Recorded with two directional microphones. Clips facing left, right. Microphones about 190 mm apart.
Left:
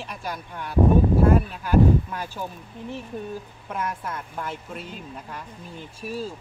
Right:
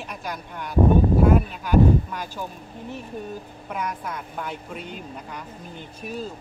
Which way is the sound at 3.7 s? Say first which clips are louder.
Even; 5° left (ahead or behind).